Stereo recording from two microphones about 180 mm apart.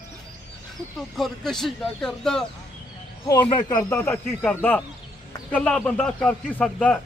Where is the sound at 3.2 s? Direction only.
25° left (ahead or behind).